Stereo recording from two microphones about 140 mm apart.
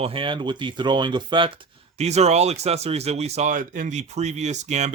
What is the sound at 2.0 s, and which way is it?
Speech, 50° right (ahead or behind).